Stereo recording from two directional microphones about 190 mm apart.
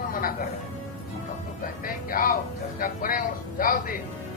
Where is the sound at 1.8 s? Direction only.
50° left (ahead or behind).